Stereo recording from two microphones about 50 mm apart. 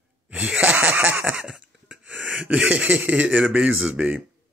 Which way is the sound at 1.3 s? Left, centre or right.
Centre.